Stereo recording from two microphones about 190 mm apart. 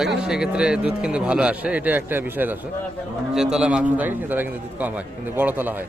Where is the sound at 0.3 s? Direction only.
5° right (ahead or behind).